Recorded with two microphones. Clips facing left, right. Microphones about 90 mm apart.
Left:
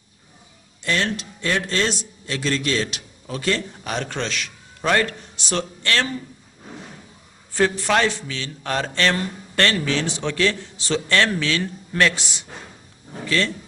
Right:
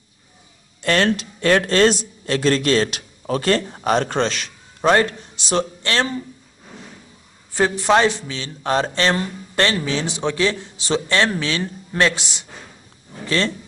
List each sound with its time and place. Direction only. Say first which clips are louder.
0.8 s a man's voice: right 6 dB; 60° right (ahead or behind); by 6.1 s 25° right (ahead or behind)
7.5 s a man's voice: right 3 dB; 20° right (ahead or behind)